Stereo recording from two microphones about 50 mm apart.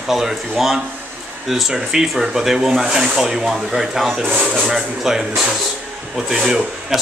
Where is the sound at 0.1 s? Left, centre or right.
Centre.